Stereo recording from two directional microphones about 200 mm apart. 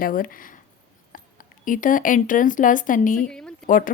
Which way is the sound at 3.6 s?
45° left (ahead or behind).